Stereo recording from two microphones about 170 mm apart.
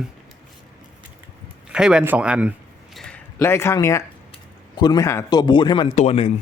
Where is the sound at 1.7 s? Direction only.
5° right (ahead or behind).